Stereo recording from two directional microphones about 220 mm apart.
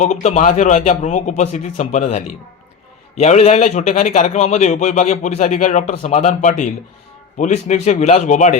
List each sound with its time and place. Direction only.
0.0 s a man's voice: 30° left (ahead or behind)